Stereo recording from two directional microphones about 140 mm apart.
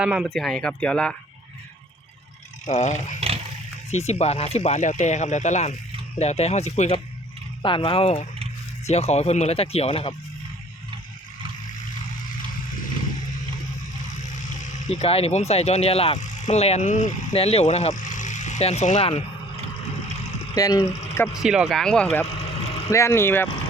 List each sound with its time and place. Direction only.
0.0 s speech: 5° right (ahead or behind)
2.6 s speech: 60° left (ahead or behind)
7.6 s speech: 35° left (ahead or behind)
14.8 s speech: 50° left (ahead or behind)
17.3 s speech: 45° left (ahead or behind)
20.1 s a sound: 50° left (ahead or behind)
20.6 s speech: 25° left (ahead or behind)
20.8 s speech: 50° left (ahead or behind)
21.4 s speech: 5° right (ahead or behind)
22.3 s vehicle: 45° left (ahead or behind)
22.9 s speech: 20° left (ahead or behind)